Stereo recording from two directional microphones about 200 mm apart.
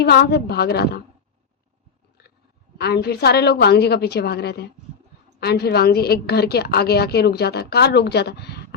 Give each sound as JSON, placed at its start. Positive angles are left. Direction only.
{"t": 0.0, "sound": "a woman's voice", "side_deg": 55}
{"t": 2.7, "sound": "a woman's voice", "side_deg": 55}